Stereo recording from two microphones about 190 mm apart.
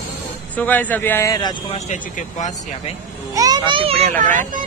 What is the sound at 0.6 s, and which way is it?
Speech, 10° left (ahead or behind).